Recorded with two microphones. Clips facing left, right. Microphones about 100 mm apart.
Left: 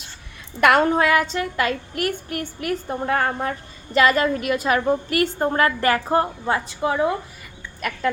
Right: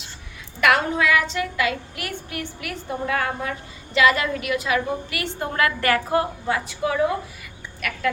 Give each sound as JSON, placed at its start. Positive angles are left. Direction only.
{"t": 0.6, "sound": "a woman's voice", "side_deg": 45}